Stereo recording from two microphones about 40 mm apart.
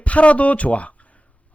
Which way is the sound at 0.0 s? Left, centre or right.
Left.